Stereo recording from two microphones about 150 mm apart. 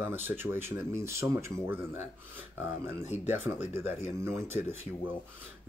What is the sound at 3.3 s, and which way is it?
Speech, 15° right (ahead or behind).